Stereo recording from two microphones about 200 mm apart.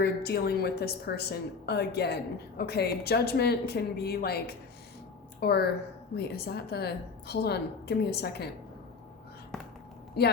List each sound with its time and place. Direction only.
0.0 s a woman's voice: 50° left (ahead or behind)
10.2 s speech: 55° left (ahead or behind)